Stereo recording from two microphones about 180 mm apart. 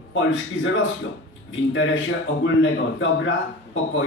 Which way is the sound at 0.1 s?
90° left.